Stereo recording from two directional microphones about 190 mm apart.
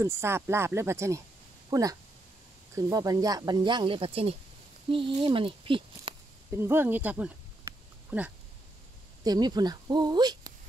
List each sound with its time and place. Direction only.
0.0 s speech: 15° right (ahead or behind)
6.5 s speech: 10° right (ahead or behind)
9.2 s speech: 20° right (ahead or behind)